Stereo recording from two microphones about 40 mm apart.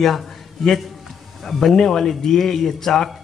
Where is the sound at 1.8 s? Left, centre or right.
Centre.